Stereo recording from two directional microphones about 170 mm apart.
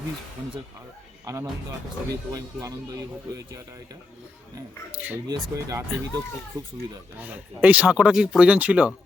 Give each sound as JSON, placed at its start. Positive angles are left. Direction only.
{"t": 1.2, "sound": "speech", "side_deg": -20}
{"t": 7.2, "sound": "speech", "side_deg": -10}